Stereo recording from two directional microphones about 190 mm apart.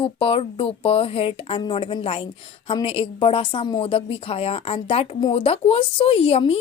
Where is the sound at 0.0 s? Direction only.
30° left (ahead or behind).